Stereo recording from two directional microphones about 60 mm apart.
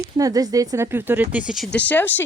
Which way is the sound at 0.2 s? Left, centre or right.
Right.